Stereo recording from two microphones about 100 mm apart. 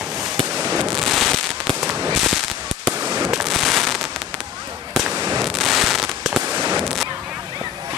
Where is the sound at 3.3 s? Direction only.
Centre (ahead or behind).